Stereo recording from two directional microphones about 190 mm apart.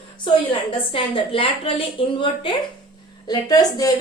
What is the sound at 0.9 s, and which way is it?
A woman's voice, 30° left (ahead or behind).